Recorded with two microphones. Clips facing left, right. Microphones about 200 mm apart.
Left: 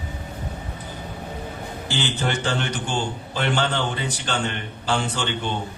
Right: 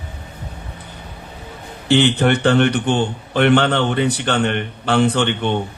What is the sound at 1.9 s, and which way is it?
A man's voice, 65° right (ahead or behind).